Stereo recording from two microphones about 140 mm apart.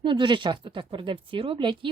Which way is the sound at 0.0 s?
35° right (ahead or behind).